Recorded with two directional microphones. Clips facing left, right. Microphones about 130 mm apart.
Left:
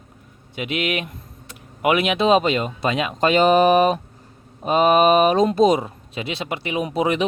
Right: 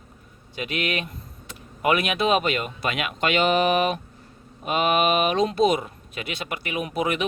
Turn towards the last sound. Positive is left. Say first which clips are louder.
# left 4 dB
turn(degrees=25)  # may be behind; listen again after turning